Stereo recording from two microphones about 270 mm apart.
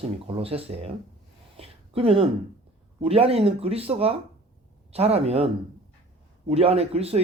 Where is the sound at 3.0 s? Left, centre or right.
Right.